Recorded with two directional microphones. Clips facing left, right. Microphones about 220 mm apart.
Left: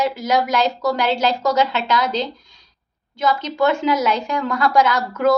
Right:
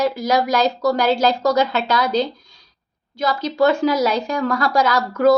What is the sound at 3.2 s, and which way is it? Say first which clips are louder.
A woman's voice: right 1 dB; 35° right (ahead or behind).